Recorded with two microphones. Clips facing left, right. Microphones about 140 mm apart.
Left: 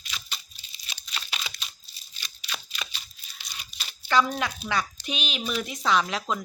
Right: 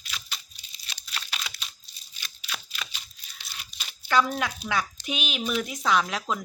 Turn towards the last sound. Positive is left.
turn(degrees=0)  # may be behind; listen again after turning